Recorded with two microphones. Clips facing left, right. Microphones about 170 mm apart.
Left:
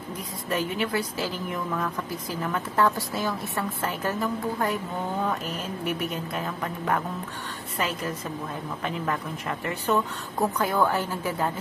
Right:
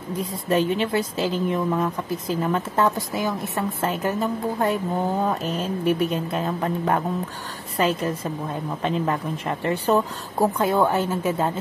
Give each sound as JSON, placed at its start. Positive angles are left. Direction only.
{"t": 0.2, "sound": "a woman's voice", "side_deg": -25}
{"t": 5.9, "sound": "a woman's voice", "side_deg": -30}
{"t": 8.8, "sound": "a woman's voice", "side_deg": -30}